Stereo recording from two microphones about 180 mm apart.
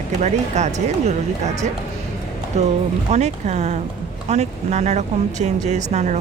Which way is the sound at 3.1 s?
40° right (ahead or behind).